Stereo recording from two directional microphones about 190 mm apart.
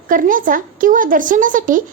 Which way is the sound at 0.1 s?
45° right (ahead or behind).